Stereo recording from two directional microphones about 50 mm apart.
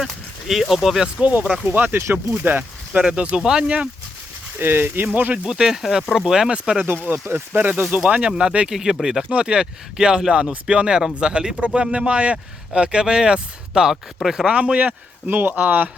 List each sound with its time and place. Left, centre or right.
0.0 s speech: centre
1.2 s speech: right
1.5 s speech: centre
1.7 s speech: right
3.0 s speech: right
4.5 s speech: right
5.5 s speech: centre
7.3 s speech: right
8.4 s speech: centre
14.5 s speech: right